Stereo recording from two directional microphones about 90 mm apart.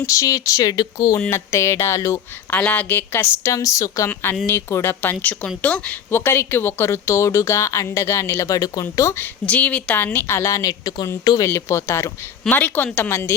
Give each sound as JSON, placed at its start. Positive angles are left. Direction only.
{"t": 0.0, "sound": "speech", "side_deg": 35}
{"t": 2.5, "sound": "a woman's voice", "side_deg": 15}
{"t": 9.5, "sound": "a woman's voice", "side_deg": 15}
{"t": 11.4, "sound": "speech", "side_deg": 30}
{"t": 12.5, "sound": "a woman's voice", "side_deg": 20}